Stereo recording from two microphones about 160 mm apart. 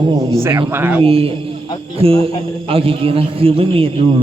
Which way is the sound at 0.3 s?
15° right (ahead or behind).